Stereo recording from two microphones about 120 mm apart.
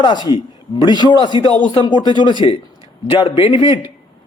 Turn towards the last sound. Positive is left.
turn(degrees=45)  # may be behind; listen again after turning